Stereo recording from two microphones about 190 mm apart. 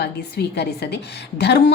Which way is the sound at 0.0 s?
60° left (ahead or behind).